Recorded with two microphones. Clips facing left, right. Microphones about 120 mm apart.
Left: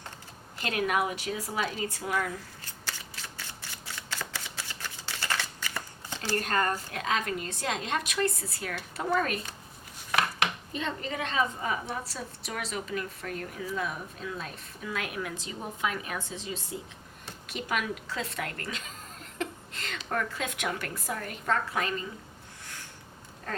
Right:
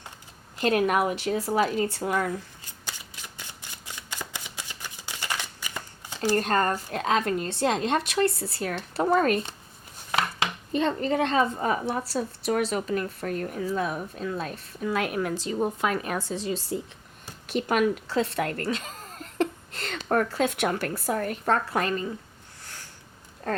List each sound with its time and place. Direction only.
0.6 s speech: 40° right (ahead or behind)
2.6 s shuffling cards: 15° right (ahead or behind)
6.3 s speech: 35° right (ahead or behind)
10.1 s a sound: 25° right (ahead or behind)
10.7 s speech: 40° right (ahead or behind)
11.9 s speech: 30° right (ahead or behind)
12.5 s speech: 45° right (ahead or behind)
19.4 s a sound: 35° right (ahead or behind)
20.0 s speech: 45° right (ahead or behind)